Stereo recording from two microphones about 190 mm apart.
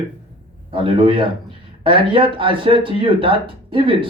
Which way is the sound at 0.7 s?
25° right (ahead or behind).